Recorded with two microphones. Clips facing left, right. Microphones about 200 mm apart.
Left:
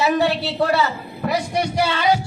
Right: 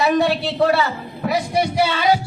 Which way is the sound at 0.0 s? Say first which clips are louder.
Right 1 dB; centre (ahead or behind).